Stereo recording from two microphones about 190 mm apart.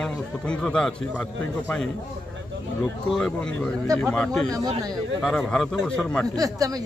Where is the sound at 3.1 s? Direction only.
5° left (ahead or behind).